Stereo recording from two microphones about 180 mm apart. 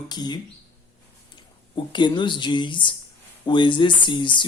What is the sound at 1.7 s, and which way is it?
Speech, 25° left (ahead or behind).